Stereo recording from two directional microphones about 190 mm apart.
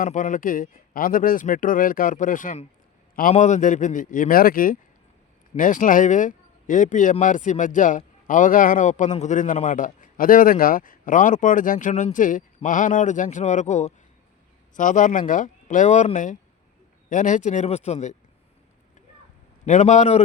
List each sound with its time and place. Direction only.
0.0 s speech: 40° left (ahead or behind)
19.6 s speech: 40° left (ahead or behind)